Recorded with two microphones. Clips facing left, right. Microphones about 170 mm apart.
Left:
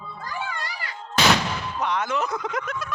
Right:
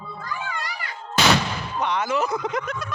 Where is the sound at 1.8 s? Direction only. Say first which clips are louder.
Right 2 dB; centre (ahead or behind).